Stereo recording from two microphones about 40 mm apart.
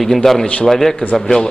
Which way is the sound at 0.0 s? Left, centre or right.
Centre.